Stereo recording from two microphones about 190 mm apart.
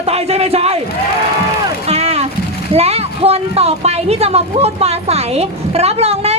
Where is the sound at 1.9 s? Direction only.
30° right (ahead or behind).